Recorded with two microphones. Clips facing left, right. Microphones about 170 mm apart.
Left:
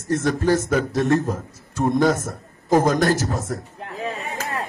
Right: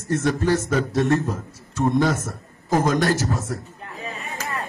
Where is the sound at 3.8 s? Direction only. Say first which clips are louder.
Left 5 dB; 85° left.